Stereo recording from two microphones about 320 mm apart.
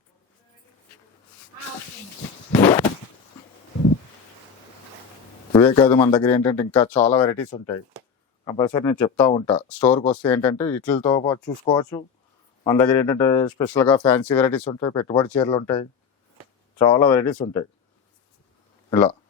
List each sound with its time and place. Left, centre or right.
2.5 s a sound: centre
5.5 s a man's voice: centre
18.9 s speech: centre